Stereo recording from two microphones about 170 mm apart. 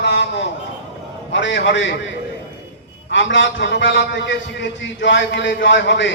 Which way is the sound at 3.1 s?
90° left.